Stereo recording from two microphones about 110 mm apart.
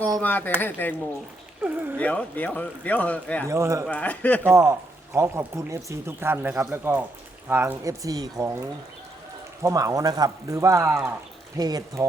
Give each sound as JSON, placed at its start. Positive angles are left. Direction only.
{"t": 0.2, "sound": "speech", "side_deg": 15}
{"t": 2.0, "sound": "speech", "side_deg": 15}
{"t": 3.5, "sound": "speech", "side_deg": -25}
{"t": 3.8, "sound": "speech", "side_deg": 10}
{"t": 4.4, "sound": "speech", "side_deg": -25}
{"t": 7.9, "sound": "speech", "side_deg": -35}
{"t": 9.6, "sound": "speech", "side_deg": -30}